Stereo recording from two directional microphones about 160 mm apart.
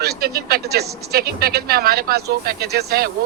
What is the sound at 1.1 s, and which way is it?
Speech, 75° right (ahead or behind).